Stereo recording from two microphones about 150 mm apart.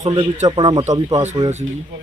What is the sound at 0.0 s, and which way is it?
Speech, 25° right (ahead or behind).